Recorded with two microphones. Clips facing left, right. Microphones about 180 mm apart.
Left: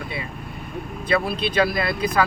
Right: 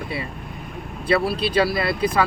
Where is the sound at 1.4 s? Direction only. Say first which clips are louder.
Right 1 dB; 30° right (ahead or behind).